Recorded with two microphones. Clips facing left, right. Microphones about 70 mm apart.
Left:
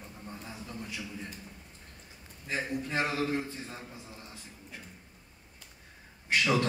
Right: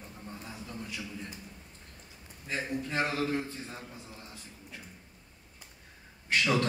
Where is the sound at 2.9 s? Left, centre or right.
Centre.